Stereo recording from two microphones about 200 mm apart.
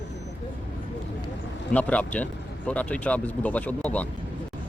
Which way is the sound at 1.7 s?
5° left (ahead or behind).